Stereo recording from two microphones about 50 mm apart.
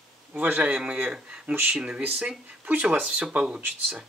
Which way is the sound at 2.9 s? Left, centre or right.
Right.